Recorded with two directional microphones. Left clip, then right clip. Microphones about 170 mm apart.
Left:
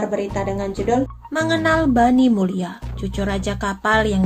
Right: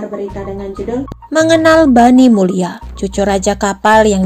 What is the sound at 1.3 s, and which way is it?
Speech, 50° right (ahead or behind).